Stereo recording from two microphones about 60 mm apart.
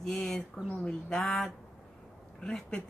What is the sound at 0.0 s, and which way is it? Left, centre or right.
Speech, centre.